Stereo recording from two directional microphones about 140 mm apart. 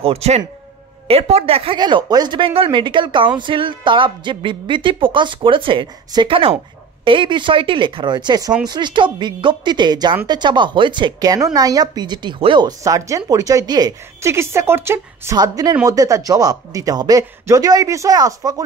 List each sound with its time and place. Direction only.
0.0 s speech: 45° right (ahead or behind); by 18.6 s 25° right (ahead or behind)